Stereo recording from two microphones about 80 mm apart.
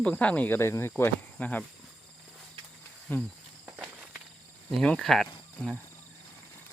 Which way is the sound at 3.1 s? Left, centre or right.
Left.